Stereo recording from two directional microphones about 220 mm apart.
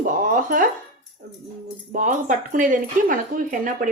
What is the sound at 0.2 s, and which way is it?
Music, 40° right (ahead or behind).